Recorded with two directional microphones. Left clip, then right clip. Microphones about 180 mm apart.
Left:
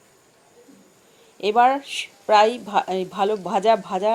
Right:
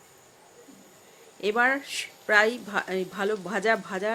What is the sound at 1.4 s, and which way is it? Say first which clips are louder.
Speech: left 7 dB; 25° right (ahead or behind).